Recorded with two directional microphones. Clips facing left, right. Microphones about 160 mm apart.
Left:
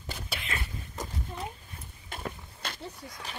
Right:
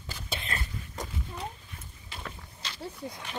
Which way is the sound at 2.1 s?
50° left (ahead or behind).